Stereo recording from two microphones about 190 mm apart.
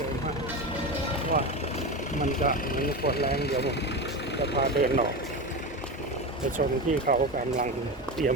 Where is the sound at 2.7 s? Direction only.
50° left (ahead or behind).